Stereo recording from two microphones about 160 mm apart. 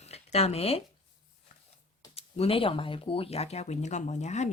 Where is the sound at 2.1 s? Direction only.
35° left (ahead or behind).